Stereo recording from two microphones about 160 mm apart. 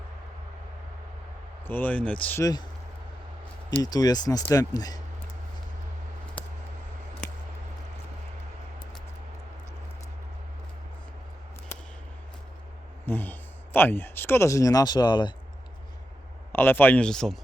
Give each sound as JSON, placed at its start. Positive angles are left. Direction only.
{"t": 1.6, "sound": "speech", "side_deg": 10}
{"t": 2.4, "sound": "speech", "side_deg": 25}
{"t": 3.8, "sound": "speech", "side_deg": 25}
{"t": 6.4, "sound": "scissors", "side_deg": 10}
{"t": 13.1, "sound": "a sound", "side_deg": 10}
{"t": 13.7, "sound": "speech", "side_deg": 15}
{"t": 16.5, "sound": "speech", "side_deg": 15}